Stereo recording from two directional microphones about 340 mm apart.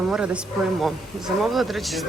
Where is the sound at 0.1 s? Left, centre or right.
Centre.